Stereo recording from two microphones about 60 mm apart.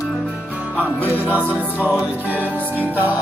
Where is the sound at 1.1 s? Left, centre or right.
Right.